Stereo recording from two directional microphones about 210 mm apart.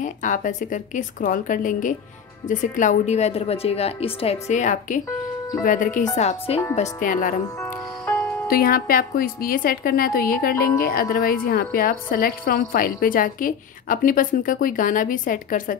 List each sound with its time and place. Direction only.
0.0 s a woman's voice: 40° left (ahead or behind)
7.4 s music: 10° left (ahead or behind)
8.5 s a woman's voice: 45° left (ahead or behind)